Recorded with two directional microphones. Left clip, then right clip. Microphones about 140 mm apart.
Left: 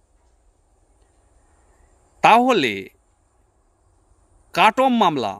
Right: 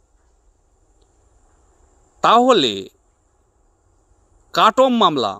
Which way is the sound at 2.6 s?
55° left (ahead or behind).